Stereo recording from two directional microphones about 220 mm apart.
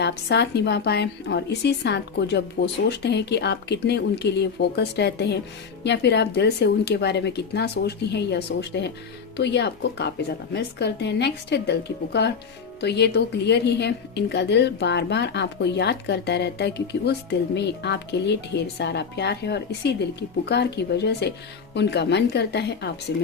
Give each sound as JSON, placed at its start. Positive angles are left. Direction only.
{"t": 0.0, "sound": "a woman's voice", "side_deg": 50}